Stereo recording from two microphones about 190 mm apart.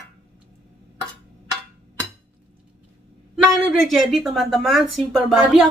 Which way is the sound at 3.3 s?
Centre (ahead or behind).